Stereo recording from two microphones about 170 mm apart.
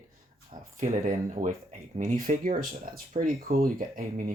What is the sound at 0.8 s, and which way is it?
Speech, 50° right (ahead or behind).